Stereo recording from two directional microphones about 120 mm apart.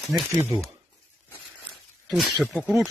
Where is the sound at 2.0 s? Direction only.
Centre (ahead or behind).